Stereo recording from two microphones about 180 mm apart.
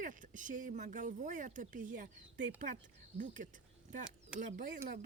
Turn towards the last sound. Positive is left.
turn(degrees=-45)  # may be behind; listen again after turning